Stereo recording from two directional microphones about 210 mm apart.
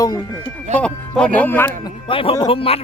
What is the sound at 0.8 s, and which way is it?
Speech, 5° left (ahead or behind).